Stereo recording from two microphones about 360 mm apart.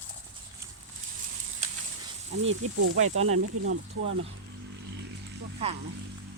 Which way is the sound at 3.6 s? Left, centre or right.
Right.